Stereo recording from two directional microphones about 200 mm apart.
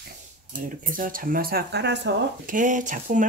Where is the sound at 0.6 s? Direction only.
45° right (ahead or behind).